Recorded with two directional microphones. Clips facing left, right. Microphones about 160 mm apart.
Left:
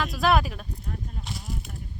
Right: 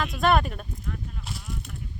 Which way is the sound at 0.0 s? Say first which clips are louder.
Even; centre (ahead or behind).